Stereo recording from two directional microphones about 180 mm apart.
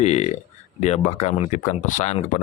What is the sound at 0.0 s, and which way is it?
Speech, 40° left (ahead or behind).